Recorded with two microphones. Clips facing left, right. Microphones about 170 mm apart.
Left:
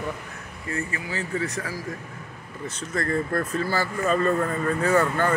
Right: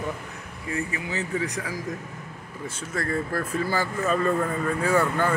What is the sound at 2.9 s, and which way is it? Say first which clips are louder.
Speech: left 2 dB; 5° right (ahead or behind).